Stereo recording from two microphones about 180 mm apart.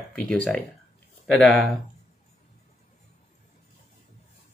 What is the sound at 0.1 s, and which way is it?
Speech, 5° left (ahead or behind).